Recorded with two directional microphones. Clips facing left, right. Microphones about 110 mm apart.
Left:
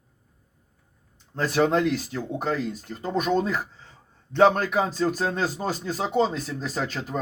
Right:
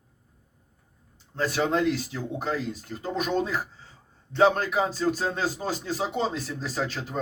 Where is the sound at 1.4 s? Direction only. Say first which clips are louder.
Left 3 dB; 45° left (ahead or behind).